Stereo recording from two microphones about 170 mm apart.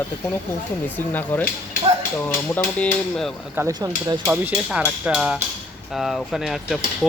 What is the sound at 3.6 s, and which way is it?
Speech, 20° right (ahead or behind).